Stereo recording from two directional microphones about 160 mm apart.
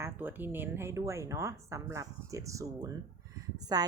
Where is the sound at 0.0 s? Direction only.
10° right (ahead or behind).